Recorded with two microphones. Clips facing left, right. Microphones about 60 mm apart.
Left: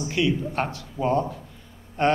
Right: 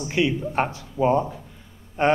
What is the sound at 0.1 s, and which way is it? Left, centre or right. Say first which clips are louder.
A man's voice: right 2 dB; centre.